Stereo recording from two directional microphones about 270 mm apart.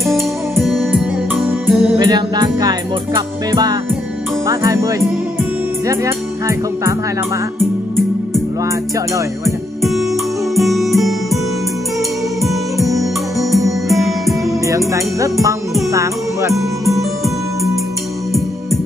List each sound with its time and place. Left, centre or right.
0.0 s music: centre
2.0 s speech: centre
9.8 s music: centre
12.4 s music: centre
14.7 s speech: centre
15.9 s music: centre
16.5 s music: centre